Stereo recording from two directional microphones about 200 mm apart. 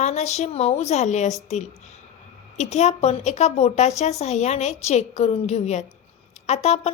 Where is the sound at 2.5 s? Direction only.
35° left (ahead or behind).